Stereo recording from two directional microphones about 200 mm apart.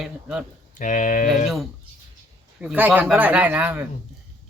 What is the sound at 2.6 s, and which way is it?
Speech, 10° right (ahead or behind).